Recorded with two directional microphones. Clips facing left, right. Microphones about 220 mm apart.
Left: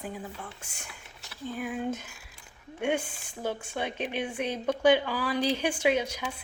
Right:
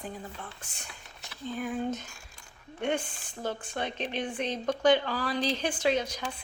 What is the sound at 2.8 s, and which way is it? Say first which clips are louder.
Speech: left 1 dB; 10° left (ahead or behind).